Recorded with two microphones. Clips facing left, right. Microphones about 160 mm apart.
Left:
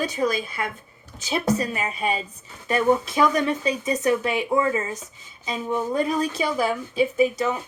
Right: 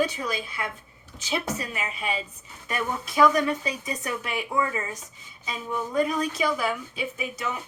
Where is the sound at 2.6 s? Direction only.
25° left (ahead or behind).